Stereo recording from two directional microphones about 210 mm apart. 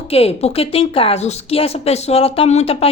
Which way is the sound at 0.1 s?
30° left (ahead or behind).